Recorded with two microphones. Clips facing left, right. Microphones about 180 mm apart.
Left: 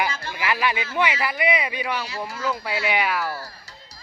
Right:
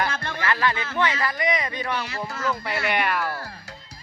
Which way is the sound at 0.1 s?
60° right (ahead or behind).